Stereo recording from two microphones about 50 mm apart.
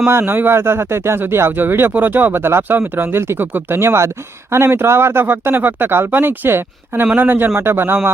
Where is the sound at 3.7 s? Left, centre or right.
Right.